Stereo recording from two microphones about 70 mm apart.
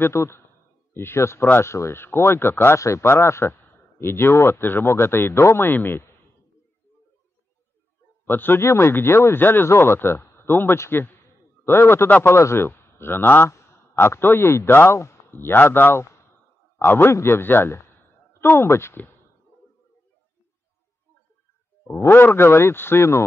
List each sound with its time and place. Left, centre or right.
0.0 s speech: left
8.3 s a man's voice: left
21.9 s speech: left